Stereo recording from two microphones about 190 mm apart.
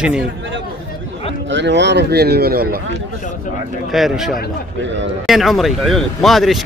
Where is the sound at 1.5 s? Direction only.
70° right (ahead or behind); by 2.8 s 50° right (ahead or behind).